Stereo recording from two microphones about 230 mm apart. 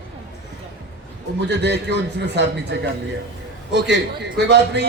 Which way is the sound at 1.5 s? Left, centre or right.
Right.